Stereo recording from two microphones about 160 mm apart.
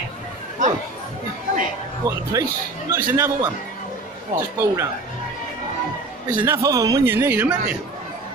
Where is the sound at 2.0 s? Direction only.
20° right (ahead or behind).